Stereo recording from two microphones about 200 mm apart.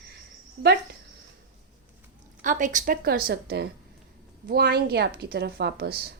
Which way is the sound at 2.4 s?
40° right (ahead or behind).